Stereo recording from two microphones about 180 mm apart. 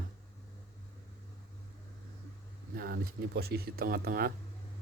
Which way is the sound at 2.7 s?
60° right (ahead or behind).